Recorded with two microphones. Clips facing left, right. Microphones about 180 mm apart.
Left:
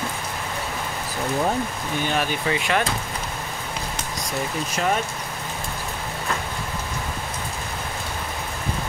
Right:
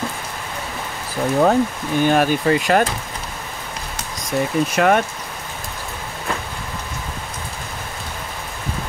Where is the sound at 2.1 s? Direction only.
45° right (ahead or behind).